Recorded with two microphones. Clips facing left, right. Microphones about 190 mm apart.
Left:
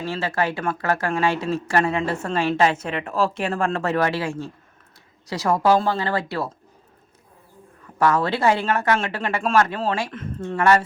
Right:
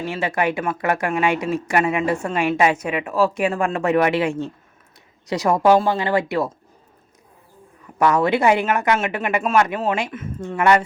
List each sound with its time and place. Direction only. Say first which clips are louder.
0.0 s speech: right 2 dB; 15° right (ahead or behind)
7.9 s speech: right 3 dB; 15° right (ahead or behind)